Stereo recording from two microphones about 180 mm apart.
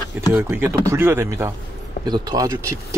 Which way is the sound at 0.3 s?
10° right (ahead or behind).